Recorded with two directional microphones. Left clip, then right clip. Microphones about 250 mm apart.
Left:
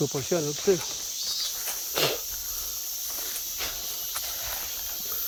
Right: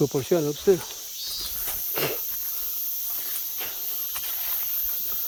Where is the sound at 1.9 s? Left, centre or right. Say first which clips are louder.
Left 3 dB; centre.